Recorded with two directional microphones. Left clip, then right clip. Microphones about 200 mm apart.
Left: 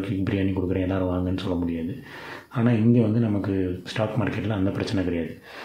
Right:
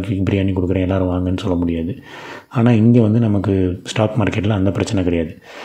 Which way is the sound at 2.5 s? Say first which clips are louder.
Right 7 dB; 45° right (ahead or behind).